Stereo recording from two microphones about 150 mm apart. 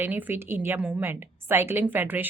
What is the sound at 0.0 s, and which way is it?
A woman's voice, 10° right (ahead or behind).